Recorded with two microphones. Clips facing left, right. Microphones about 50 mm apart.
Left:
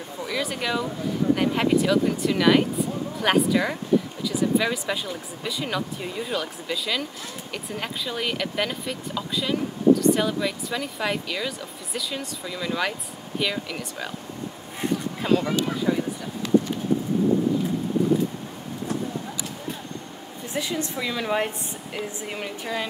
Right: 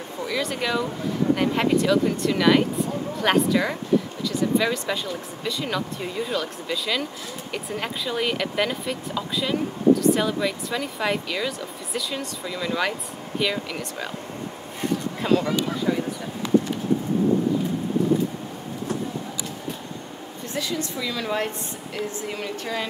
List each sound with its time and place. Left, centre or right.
0.2 s speech: centre
15.2 s speech: centre
20.5 s a woman's voice: left